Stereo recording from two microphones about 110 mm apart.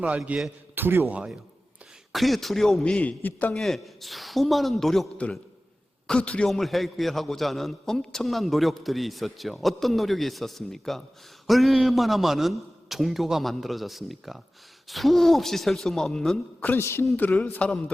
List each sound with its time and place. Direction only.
0.0 s a man's voice: 10° right (ahead or behind)
0.8 s speech: 20° right (ahead or behind)
2.1 s a man's voice: centre (ahead or behind)
3.5 s a man's voice: centre (ahead or behind); by 17.1 s 25° left (ahead or behind)
17.2 s a man's voice: 15° left (ahead or behind)